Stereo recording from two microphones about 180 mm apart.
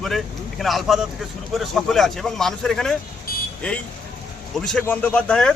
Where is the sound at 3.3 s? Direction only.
55° left (ahead or behind).